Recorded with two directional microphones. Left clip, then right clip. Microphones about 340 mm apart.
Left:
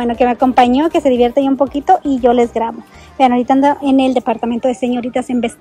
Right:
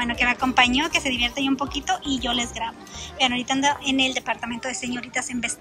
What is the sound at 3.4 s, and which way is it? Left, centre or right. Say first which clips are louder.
Speech: left 10 dB; left.